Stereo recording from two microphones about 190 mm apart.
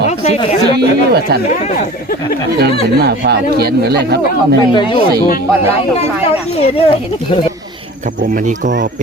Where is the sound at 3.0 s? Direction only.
60° right (ahead or behind).